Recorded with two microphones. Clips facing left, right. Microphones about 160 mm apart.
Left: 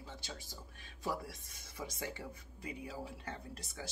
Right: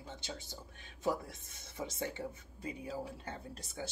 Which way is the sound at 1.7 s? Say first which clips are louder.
Right 4 dB; 25° right (ahead or behind).